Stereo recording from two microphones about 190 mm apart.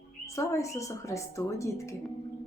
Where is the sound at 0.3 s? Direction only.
15° left (ahead or behind).